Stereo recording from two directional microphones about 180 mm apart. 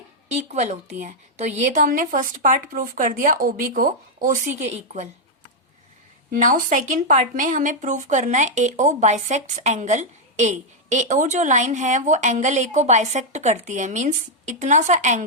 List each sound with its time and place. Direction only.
0.3 s speech: 40° right (ahead or behind)
6.3 s speech: 45° right (ahead or behind)